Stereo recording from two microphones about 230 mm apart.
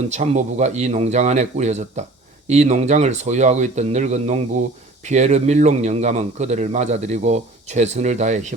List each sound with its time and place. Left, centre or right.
0.1 s a man's voice: right